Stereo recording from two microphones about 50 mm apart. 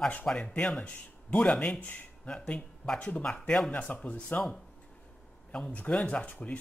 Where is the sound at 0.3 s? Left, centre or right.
Centre.